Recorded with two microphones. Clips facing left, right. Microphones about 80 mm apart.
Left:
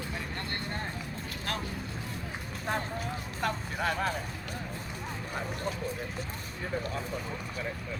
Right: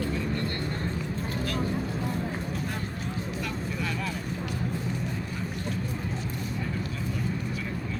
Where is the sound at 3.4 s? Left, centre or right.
Left.